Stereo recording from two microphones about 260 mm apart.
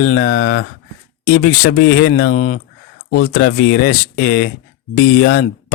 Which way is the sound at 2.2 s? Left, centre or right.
Left.